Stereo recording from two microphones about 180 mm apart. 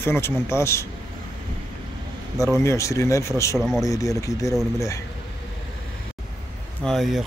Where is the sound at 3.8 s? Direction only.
20° left (ahead or behind).